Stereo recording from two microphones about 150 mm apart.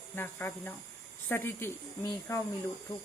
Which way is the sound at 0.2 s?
10° left (ahead or behind).